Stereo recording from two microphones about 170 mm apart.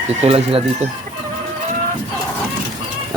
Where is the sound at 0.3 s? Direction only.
35° right (ahead or behind).